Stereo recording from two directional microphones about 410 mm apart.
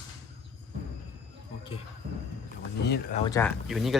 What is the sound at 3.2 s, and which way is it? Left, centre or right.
Speech, centre.